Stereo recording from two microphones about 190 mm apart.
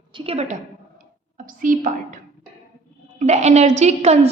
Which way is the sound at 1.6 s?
45° right (ahead or behind).